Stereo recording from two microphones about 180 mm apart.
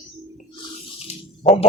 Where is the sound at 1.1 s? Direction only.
35° left (ahead or behind).